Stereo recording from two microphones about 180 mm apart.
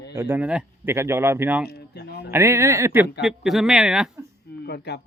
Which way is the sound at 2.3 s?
15° right (ahead or behind).